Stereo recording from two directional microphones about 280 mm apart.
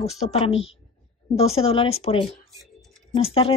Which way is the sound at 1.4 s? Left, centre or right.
Left.